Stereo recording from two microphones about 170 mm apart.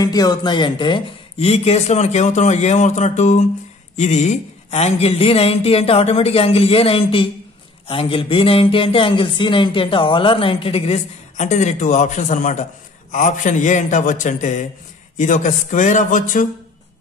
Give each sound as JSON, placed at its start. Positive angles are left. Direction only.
{"t": 0.0, "sound": "a man's voice", "side_deg": 20}